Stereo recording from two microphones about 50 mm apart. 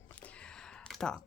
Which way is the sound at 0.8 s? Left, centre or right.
Centre.